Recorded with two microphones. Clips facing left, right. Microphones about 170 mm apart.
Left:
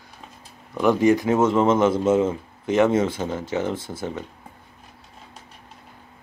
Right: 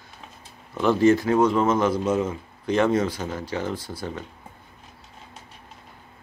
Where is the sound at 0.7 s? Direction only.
15° left (ahead or behind).